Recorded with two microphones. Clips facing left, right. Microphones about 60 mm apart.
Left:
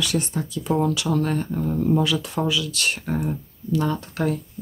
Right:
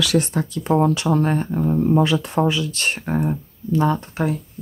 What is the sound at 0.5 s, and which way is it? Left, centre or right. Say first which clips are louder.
Speech: right 4 dB; right.